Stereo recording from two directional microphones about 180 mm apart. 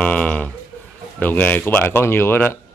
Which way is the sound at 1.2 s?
10° left (ahead or behind).